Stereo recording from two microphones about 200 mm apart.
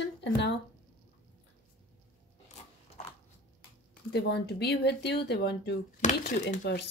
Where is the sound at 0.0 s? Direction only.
60° left (ahead or behind).